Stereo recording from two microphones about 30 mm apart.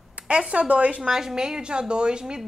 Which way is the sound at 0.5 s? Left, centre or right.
Right.